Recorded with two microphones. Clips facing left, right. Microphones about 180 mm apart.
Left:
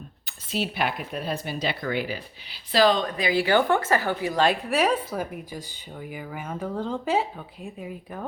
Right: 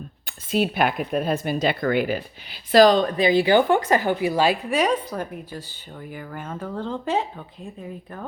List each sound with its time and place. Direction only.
0.3 s speech: 50° right (ahead or behind)
3.2 s a woman's voice: 20° right (ahead or behind); by 8.3 s 5° left (ahead or behind)